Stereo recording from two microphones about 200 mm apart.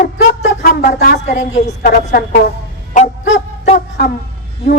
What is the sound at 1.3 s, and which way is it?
Speech, 35° left (ahead or behind).